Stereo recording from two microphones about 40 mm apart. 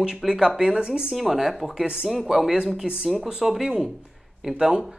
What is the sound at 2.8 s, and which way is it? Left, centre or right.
A woman's voice, centre.